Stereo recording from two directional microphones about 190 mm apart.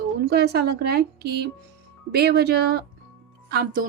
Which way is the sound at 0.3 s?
60° right (ahead or behind).